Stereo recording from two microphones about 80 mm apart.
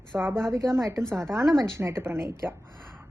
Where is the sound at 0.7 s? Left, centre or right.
Right.